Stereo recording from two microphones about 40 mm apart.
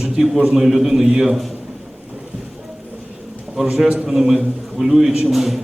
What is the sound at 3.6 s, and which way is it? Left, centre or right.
A man's voice, centre.